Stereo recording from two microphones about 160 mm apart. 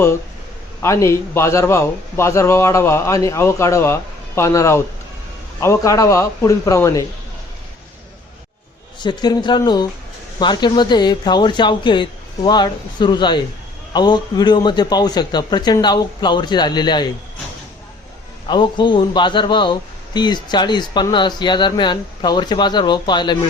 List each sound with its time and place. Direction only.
0.8 s a man's voice: 20° left (ahead or behind)
9.0 s speech: 25° left (ahead or behind)
18.4 s speech: 30° left (ahead or behind)